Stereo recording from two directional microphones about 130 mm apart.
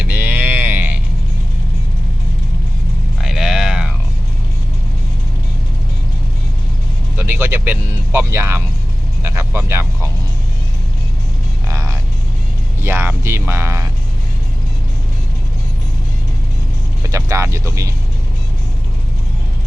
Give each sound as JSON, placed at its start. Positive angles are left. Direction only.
{"t": 0.0, "sound": "a sound", "side_deg": -15}
{"t": 3.2, "sound": "a sound", "side_deg": -5}
{"t": 7.2, "sound": "vehicle", "side_deg": -15}
{"t": 8.3, "sound": "speech", "side_deg": -20}
{"t": 11.7, "sound": "music", "side_deg": -25}
{"t": 12.8, "sound": "speech", "side_deg": -20}
{"t": 17.0, "sound": "speech", "side_deg": -25}